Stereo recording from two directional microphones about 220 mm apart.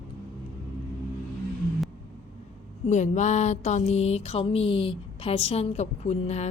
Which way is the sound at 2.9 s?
30° left (ahead or behind).